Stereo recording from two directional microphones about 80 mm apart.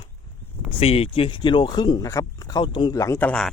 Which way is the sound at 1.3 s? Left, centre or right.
Left.